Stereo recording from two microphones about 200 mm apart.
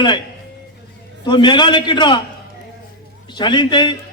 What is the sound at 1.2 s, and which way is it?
Speech, 20° left (ahead or behind).